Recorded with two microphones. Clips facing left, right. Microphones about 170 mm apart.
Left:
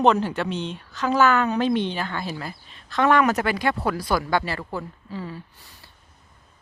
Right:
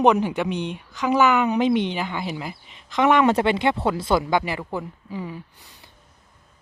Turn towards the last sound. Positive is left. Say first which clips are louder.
# right 2 dB
turn(degrees=-15)  # may be behind; listen again after turning